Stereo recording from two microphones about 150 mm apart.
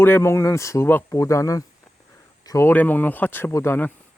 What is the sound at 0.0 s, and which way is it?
Speech, 15° left (ahead or behind).